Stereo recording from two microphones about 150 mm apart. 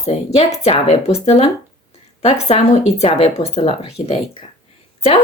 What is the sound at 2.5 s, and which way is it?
Speech, 45° left (ahead or behind).